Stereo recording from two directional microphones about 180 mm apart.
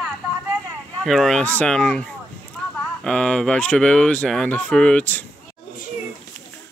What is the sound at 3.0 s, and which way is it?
Speech, 5° left (ahead or behind).